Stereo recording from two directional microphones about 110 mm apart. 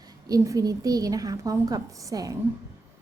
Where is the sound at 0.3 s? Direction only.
30° right (ahead or behind).